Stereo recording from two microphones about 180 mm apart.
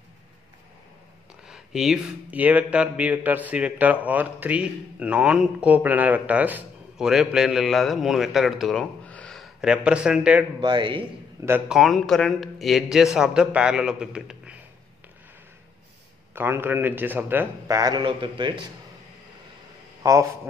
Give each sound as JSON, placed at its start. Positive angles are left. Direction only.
{"t": 1.5, "sound": "speech", "side_deg": 0}
{"t": 10.6, "sound": "a man's voice", "side_deg": -25}
{"t": 11.4, "sound": "a man's voice", "side_deg": -10}
{"t": 11.8, "sound": "speech", "side_deg": 0}
{"t": 16.3, "sound": "a man's voice", "side_deg": -10}
{"t": 20.0, "sound": "a man's voice", "side_deg": -15}